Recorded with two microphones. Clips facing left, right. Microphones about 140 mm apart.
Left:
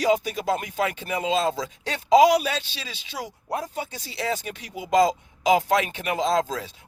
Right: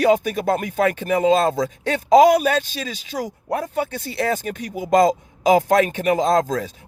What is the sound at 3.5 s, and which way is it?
Speech, 60° right (ahead or behind).